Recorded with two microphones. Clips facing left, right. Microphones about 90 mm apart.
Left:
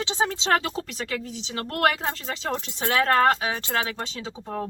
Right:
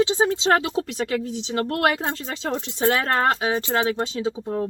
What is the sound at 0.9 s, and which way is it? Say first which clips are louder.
Speech: right 6 dB; 35° right (ahead or behind).